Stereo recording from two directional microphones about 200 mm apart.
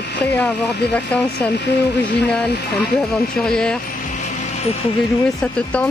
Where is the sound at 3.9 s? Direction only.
40° left (ahead or behind).